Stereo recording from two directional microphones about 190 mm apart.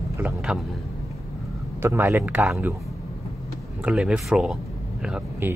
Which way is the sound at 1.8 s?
15° right (ahead or behind).